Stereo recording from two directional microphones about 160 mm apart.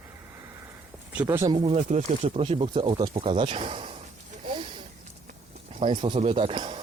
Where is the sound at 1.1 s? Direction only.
10° right (ahead or behind); by 1.8 s 30° right (ahead or behind).